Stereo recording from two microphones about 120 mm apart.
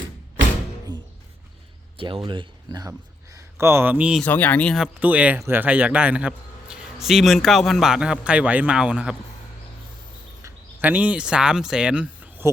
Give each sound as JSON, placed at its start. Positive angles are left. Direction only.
{"t": 0.9, "sound": "music", "side_deg": -35}
{"t": 2.0, "sound": "speech", "side_deg": -45}
{"t": 3.3, "sound": "speech", "side_deg": -20}
{"t": 4.2, "sound": "speech", "side_deg": 15}
{"t": 4.9, "sound": "a man's voice", "side_deg": -10}
{"t": 10.4, "sound": "speech", "side_deg": -15}